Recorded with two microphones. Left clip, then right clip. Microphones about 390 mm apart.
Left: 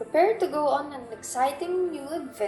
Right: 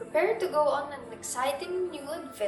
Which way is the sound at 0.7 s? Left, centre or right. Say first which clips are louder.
Left 3 dB; centre.